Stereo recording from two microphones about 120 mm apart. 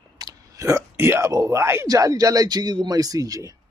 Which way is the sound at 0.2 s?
30° right (ahead or behind).